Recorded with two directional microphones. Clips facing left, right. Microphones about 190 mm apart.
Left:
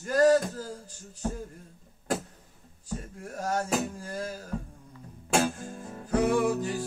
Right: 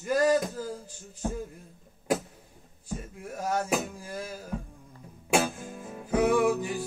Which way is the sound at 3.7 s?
10° right (ahead or behind).